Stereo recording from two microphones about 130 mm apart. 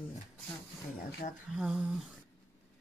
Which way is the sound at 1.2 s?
75° left (ahead or behind).